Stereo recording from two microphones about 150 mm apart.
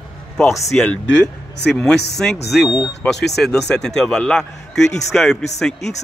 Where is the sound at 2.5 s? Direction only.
Centre (ahead or behind).